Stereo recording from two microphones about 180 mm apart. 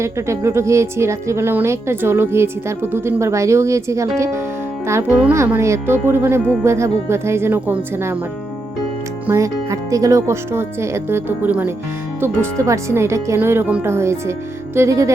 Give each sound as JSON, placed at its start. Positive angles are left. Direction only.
{"t": 0.0, "sound": "speech", "side_deg": -15}
{"t": 9.2, "sound": "speech", "side_deg": -15}